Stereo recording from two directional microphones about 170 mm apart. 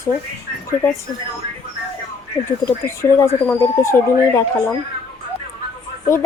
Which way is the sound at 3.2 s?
15° left (ahead or behind).